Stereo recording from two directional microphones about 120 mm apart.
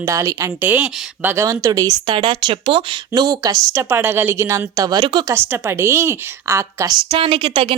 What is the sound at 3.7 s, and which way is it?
A woman's voice, 20° right (ahead or behind).